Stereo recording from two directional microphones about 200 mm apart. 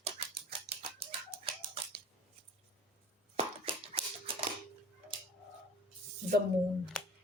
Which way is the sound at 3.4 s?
30° right (ahead or behind).